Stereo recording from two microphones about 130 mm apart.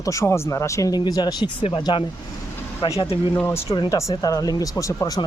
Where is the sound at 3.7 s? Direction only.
35° left (ahead or behind).